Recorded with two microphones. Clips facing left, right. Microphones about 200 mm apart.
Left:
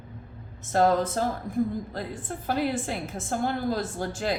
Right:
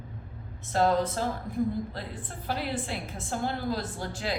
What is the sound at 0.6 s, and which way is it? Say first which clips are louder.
Speech: left 3 dB; 45° left (ahead or behind).